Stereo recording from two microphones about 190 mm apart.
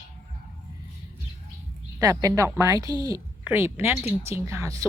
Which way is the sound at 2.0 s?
20° right (ahead or behind).